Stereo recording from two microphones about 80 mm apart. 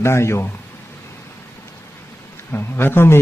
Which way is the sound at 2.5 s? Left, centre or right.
Left.